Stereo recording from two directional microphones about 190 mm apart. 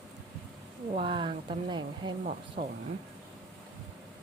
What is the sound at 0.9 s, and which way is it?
Speech, 25° right (ahead or behind).